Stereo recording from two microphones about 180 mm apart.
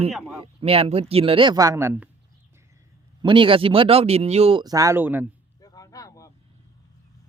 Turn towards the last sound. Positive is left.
turn(degrees=20)  # may be behind; listen again after turning